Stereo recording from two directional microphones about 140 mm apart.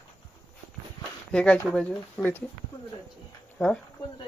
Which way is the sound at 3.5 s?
10° left (ahead or behind).